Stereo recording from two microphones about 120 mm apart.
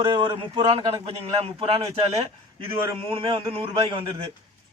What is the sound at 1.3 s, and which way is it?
A man's voice, 50° right (ahead or behind).